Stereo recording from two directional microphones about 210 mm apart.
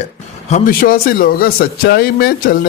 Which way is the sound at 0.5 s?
40° left (ahead or behind).